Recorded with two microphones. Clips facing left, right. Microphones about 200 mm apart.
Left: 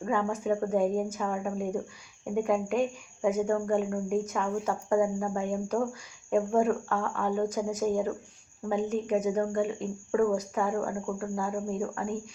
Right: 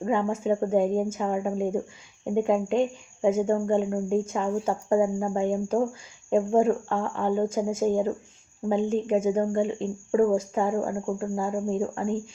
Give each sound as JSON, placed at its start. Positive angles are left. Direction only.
{"t": 0.0, "sound": "speech", "side_deg": -25}